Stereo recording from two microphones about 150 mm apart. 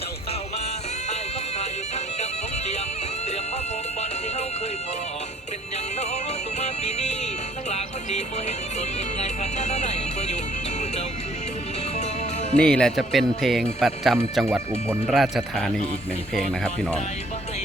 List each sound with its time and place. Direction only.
6.6 s music: 50° left (ahead or behind)
12.5 s speech: 5° left (ahead or behind)
14.4 s speech: 15° right (ahead or behind)
15.1 s speech: centre (ahead or behind)